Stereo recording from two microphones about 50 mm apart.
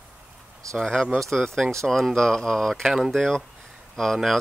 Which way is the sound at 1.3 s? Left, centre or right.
Centre.